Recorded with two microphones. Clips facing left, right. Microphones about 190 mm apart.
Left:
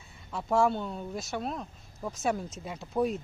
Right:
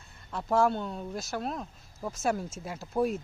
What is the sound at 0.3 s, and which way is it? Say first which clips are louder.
Speech: even; centre (ahead or behind).